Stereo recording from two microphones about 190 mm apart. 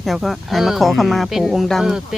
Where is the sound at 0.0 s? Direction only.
Centre (ahead or behind).